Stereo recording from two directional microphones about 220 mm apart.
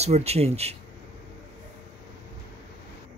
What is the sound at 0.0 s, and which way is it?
Speech, 30° right (ahead or behind).